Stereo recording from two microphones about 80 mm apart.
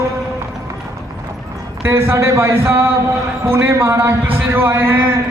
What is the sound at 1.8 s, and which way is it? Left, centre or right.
A man's voice, right.